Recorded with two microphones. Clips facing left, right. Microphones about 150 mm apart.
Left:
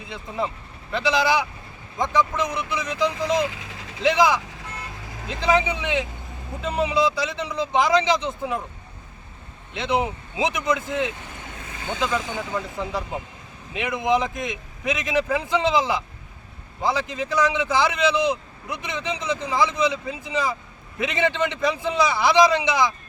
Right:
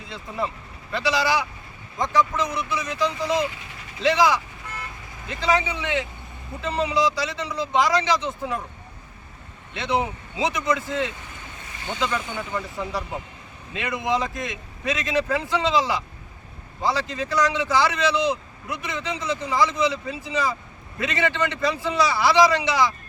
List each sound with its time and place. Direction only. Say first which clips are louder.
0.1 s speech: left 1 dB; 20° left (ahead or behind)
5.4 s speech: left 2 dB; 15° left (ahead or behind)
9.7 s speech: left 1 dB; 20° left (ahead or behind)